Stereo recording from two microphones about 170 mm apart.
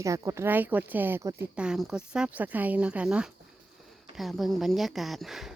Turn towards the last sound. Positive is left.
turn(degrees=0)  # may be behind; listen again after turning